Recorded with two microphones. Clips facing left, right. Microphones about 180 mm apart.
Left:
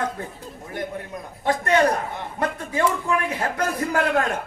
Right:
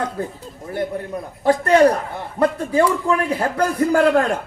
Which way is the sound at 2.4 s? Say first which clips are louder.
Right 7 dB; 30° right (ahead or behind).